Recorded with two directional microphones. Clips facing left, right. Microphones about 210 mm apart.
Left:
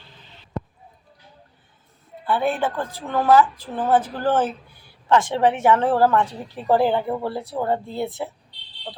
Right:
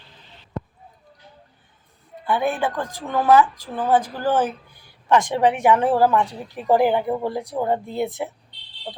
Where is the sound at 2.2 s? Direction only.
15° right (ahead or behind).